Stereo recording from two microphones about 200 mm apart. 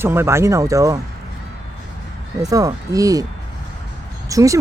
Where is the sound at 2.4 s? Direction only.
15° right (ahead or behind).